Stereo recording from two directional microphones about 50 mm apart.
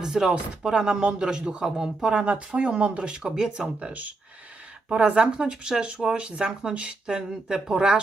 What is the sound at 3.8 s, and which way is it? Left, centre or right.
Speech, right.